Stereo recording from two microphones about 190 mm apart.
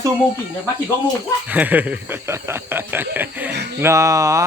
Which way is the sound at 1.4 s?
10° right (ahead or behind).